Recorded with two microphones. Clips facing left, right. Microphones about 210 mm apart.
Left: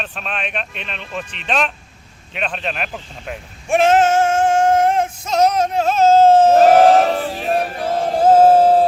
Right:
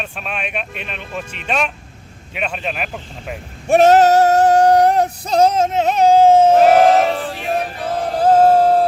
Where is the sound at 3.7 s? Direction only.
40° right (ahead or behind); by 6.7 s 10° right (ahead or behind).